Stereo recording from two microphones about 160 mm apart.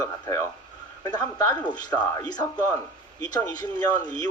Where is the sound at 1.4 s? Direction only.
25° left (ahead or behind).